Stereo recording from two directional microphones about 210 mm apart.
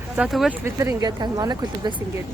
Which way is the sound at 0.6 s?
15° right (ahead or behind).